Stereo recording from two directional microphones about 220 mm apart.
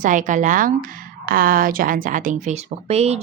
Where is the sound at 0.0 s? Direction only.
35° right (ahead or behind).